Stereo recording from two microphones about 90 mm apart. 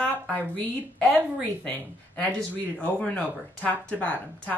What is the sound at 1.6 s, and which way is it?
Speech, 15° left (ahead or behind).